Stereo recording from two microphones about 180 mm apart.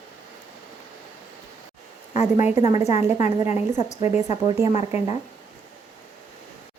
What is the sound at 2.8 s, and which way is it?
Speech, 35° left (ahead or behind).